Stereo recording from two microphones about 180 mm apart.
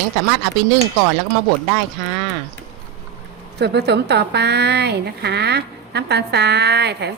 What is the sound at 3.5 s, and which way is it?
A woman's voice, 70° right (ahead or behind).